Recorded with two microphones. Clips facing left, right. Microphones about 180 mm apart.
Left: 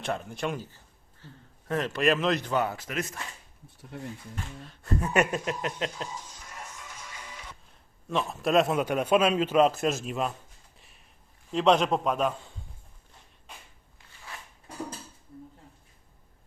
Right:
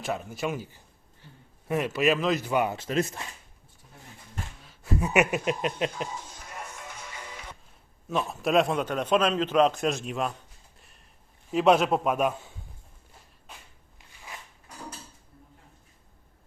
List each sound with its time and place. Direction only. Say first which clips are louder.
0.0 s a man's voice: right 1 dB; 5° right (ahead or behind)
2.7 s speech: right 6 dB; 30° right (ahead or behind)
4.6 s speech: right 1 dB; 5° right (ahead or behind)
8.0 s a man's voice: even; centre (ahead or behind)
10.8 s a sound: even; centre (ahead or behind)
11.5 s speech: right 2 dB; 5° right (ahead or behind)